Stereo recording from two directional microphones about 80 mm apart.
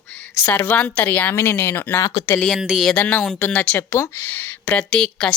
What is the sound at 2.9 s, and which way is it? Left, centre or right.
Speech, left.